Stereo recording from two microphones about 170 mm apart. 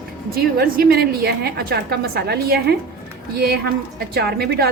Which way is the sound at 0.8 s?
70° right (ahead or behind).